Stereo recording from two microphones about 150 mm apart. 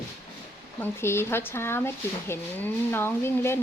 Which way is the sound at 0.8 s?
15° left (ahead or behind).